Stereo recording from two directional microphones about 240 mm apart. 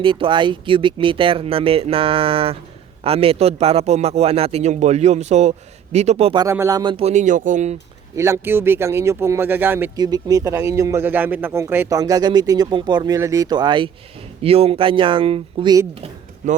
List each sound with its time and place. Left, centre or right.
0.0 s a man's voice: right
8.1 s a man's voice: centre
16.4 s speech: right